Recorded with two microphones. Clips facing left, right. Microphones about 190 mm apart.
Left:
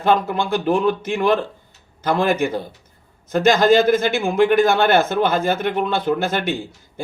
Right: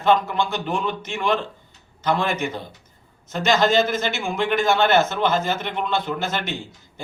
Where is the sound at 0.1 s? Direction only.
50° left (ahead or behind).